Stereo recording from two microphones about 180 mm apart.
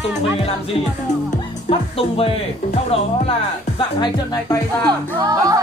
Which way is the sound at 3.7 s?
20° left (ahead or behind).